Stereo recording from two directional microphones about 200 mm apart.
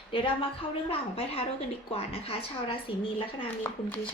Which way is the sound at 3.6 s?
10° left (ahead or behind).